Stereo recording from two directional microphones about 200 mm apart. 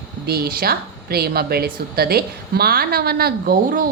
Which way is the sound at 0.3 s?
50° right (ahead or behind).